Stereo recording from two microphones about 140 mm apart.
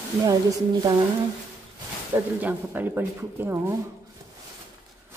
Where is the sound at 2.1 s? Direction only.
15° right (ahead or behind).